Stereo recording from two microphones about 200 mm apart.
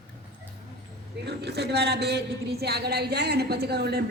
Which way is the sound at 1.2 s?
55° right (ahead or behind).